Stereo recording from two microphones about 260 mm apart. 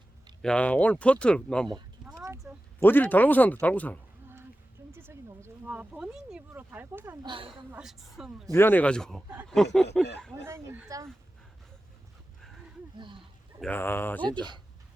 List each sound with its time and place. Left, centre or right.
0.4 s speech: centre
2.0 s a sound: centre
2.4 s speech: centre
4.9 s speech: centre
7.3 s a woman's voice: centre
7.7 s speech: centre
10.4 s speech: centre
13.0 s a sound: centre
13.6 s speech: centre